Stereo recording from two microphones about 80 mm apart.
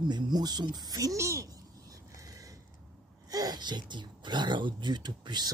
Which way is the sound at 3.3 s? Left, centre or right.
Right.